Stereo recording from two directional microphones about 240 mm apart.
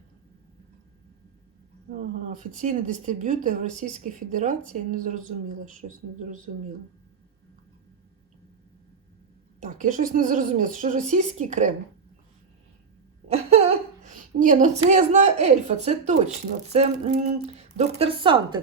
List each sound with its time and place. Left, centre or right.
2.3 s speech: right
9.6 s speech: right
13.2 s laughter: right
14.4 s a woman's voice: right